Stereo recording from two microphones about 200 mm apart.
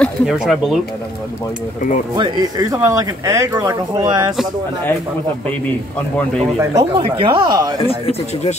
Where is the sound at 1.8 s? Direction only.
40° left (ahead or behind).